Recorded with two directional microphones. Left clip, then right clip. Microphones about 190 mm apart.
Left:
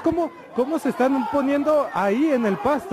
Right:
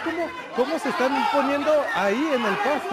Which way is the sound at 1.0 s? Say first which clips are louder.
Even; 30° left (ahead or behind).